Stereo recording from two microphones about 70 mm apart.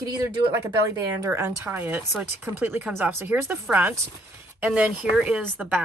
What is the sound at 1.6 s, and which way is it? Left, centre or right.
Speech, right.